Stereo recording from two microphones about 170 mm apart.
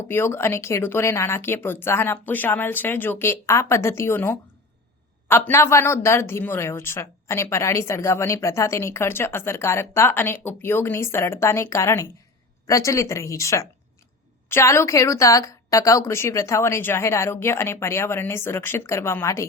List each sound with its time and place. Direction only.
0.1 s speech: 15° left (ahead or behind)